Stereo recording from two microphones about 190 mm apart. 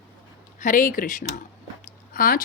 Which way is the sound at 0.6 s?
45° left (ahead or behind).